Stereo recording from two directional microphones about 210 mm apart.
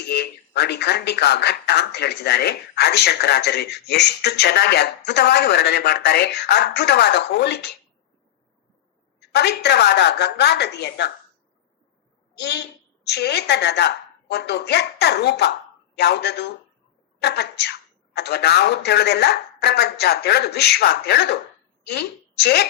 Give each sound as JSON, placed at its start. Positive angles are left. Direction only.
{"t": 0.1, "sound": "speech", "side_deg": 50}
{"t": 9.3, "sound": "speech", "side_deg": 50}
{"t": 12.4, "sound": "a woman's voice", "side_deg": 50}